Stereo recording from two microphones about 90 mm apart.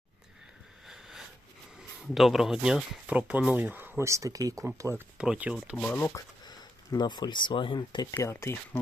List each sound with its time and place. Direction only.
0.9 s sniff: 5° right (ahead or behind)
2.1 s speech: centre (ahead or behind)
3.1 s speech: 15° right (ahead or behind); by 4.6 s 40° right (ahead or behind)
5.1 s speech: 10° right (ahead or behind)
5.7 s speech: 15° left (ahead or behind)
6.1 s speech: 50° left (ahead or behind); by 8.0 s 70° left (ahead or behind)
8.1 s speech: 30° left (ahead or behind)